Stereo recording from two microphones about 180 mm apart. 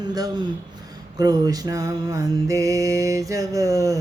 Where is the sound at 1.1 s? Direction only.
20° right (ahead or behind).